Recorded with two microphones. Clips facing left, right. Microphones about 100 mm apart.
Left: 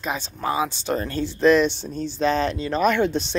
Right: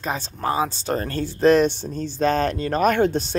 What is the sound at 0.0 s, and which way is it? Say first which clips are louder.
Speech: right 1 dB; 40° right (ahead or behind).